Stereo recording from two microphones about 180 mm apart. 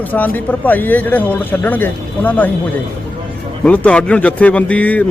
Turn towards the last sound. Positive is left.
turn(degrees=10)  # may be behind; listen again after turning